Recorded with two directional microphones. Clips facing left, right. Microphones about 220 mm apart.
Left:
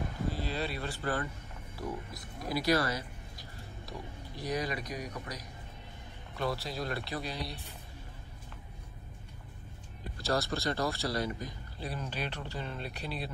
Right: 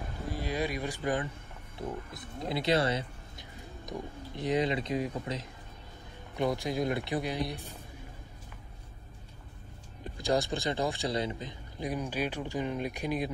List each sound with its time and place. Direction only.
0.3 s speech: 15° right (ahead or behind)
1.8 s speech: 25° right (ahead or behind)
2.3 s a sound: 25° right (ahead or behind)
4.4 s speech: 20° right (ahead or behind)
10.1 s speech: 15° right (ahead or behind)